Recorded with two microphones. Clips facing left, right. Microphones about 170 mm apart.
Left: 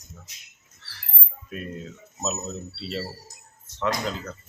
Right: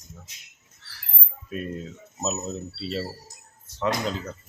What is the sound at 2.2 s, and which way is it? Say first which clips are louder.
Speech: right 1 dB; centre (ahead or behind).